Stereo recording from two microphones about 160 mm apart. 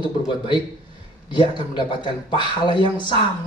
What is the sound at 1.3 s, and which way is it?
Speech, 30° left (ahead or behind).